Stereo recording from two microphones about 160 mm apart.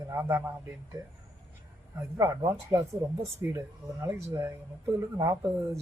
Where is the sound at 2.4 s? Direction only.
20° right (ahead or behind).